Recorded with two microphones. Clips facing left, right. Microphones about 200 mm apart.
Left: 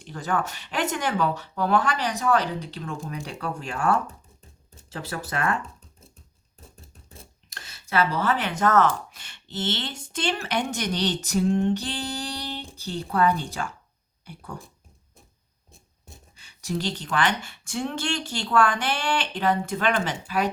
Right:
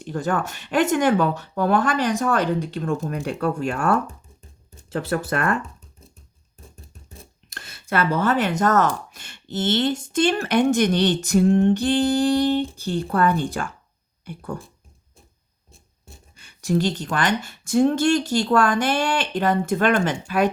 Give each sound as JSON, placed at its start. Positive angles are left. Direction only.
{"t": 0.0, "sound": "speech", "side_deg": -50}
{"t": 7.5, "sound": "speech", "side_deg": -55}
{"t": 16.3, "sound": "speech", "side_deg": -50}